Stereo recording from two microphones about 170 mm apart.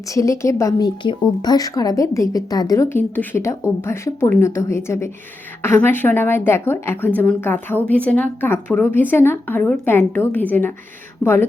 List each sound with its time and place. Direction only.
0.1 s a woman's voice: 20° left (ahead or behind)
11.2 s a woman's voice: 15° left (ahead or behind)